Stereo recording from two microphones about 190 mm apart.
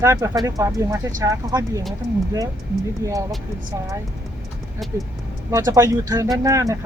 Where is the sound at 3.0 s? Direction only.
15° right (ahead or behind).